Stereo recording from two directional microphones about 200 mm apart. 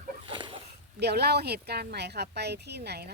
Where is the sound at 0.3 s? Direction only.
25° right (ahead or behind).